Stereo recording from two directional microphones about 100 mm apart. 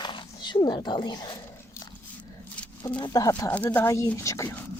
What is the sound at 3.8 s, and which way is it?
Speech, 30° left (ahead or behind).